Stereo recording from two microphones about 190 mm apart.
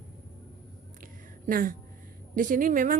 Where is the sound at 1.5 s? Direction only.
45° right (ahead or behind).